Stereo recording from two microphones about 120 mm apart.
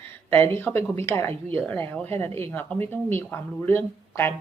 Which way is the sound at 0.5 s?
20° left (ahead or behind).